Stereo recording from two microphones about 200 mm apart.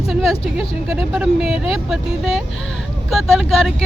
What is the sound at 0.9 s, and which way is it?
Speech, 5° right (ahead or behind).